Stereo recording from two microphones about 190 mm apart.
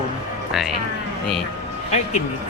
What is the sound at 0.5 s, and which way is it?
Mantra, 5° right (ahead or behind).